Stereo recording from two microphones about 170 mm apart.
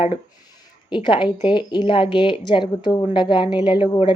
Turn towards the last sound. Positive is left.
turn(degrees=30)  # may be behind; listen again after turning